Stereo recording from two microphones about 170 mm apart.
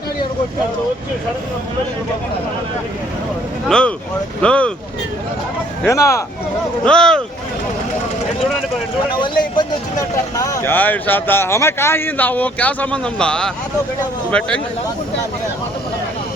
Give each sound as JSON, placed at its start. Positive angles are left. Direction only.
{"t": 3.7, "sound": "speech", "side_deg": 5}
{"t": 5.8, "sound": "speech", "side_deg": 15}
{"t": 6.8, "sound": "speech", "side_deg": 5}
{"t": 10.3, "sound": "speech", "side_deg": 20}